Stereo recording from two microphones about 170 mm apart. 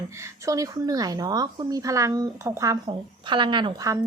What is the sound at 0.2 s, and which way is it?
A woman's voice, 20° right (ahead or behind).